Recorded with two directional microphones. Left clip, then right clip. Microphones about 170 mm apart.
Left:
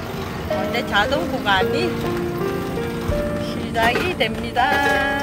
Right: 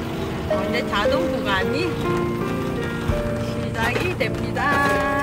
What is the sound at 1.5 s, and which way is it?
Speech, 5° right (ahead or behind).